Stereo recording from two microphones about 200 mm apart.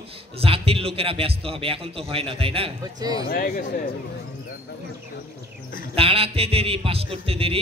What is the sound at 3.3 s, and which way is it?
Speech, 45° left (ahead or behind).